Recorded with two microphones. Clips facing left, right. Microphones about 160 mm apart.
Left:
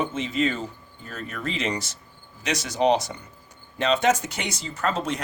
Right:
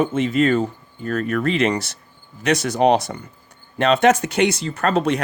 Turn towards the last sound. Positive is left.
turn(degrees=-65)  # may be behind; listen again after turning